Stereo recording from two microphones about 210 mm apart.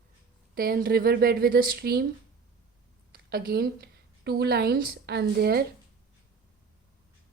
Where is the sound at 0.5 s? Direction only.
45° right (ahead or behind).